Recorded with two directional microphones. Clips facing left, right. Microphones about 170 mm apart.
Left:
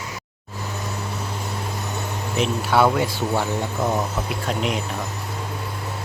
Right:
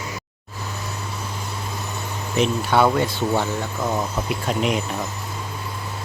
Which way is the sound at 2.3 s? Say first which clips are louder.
Right 1 dB; 5° left (ahead or behind).